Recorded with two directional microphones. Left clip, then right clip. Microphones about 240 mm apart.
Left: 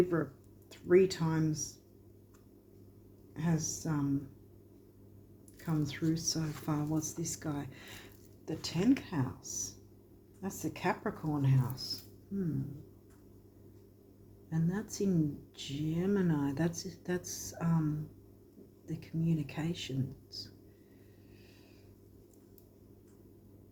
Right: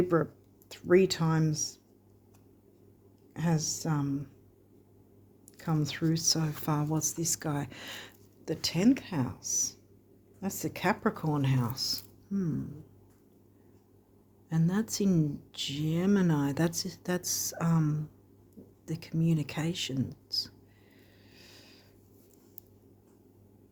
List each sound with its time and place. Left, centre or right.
0.1 s speech: right
3.3 s speech: right
5.5 s speech: right
14.5 s speech: right
21.3 s a sound: right